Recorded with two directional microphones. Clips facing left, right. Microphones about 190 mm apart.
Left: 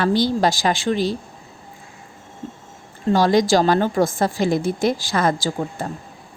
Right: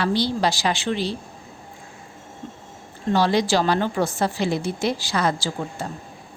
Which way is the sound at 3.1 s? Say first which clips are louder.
Left 4 dB; 45° left (ahead or behind).